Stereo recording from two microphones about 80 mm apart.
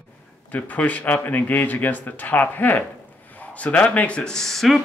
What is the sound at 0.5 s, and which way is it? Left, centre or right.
Speech, centre.